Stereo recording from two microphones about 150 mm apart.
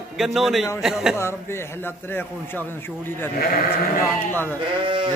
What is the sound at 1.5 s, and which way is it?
A man's voice, 15° left (ahead or behind).